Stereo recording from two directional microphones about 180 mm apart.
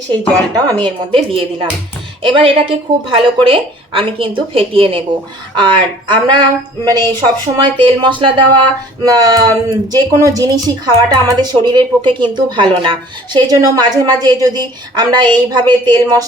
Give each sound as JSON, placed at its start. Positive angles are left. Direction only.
{"t": 0.1, "sound": "a woman's voice", "side_deg": -20}